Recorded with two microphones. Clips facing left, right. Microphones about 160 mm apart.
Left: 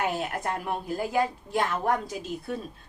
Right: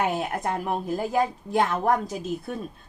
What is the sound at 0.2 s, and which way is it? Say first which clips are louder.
A woman's voice: right 3 dB; 40° right (ahead or behind).